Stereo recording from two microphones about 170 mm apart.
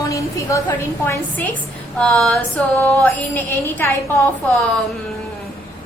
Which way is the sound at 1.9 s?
5° left (ahead or behind).